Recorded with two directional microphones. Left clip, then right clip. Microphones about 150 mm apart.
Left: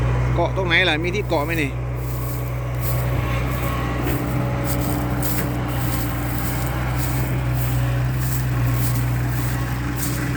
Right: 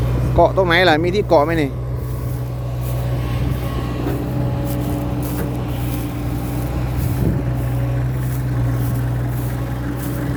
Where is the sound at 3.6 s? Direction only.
20° left (ahead or behind).